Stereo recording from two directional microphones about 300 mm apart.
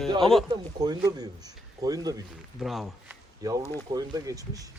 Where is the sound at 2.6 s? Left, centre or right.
Centre.